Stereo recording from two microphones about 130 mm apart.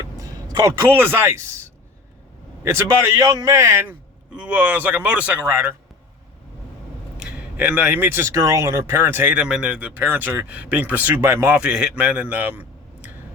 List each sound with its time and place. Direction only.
0.2 s speech: 25° right (ahead or behind)
2.6 s a man's voice: 20° right (ahead or behind)
7.2 s speech: 10° right (ahead or behind)